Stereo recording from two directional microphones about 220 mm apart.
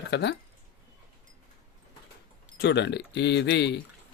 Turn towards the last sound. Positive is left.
turn(degrees=50)  # may be behind; listen again after turning